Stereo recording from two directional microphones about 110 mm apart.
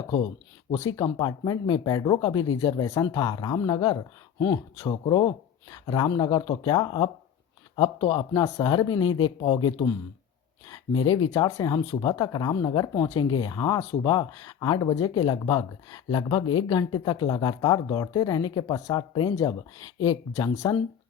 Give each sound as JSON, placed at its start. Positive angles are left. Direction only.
{"t": 0.9, "sound": "speech", "side_deg": 40}
{"t": 8.3, "sound": "speech", "side_deg": 35}
{"t": 11.3, "sound": "speech", "side_deg": 35}
{"t": 20.3, "sound": "speech", "side_deg": 30}